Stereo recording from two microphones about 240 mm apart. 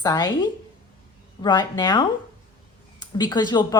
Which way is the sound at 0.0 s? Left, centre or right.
Centre.